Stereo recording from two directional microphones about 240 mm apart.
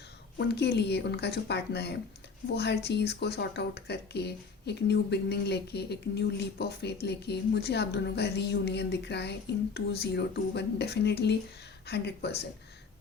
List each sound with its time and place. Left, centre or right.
0.3 s speech: left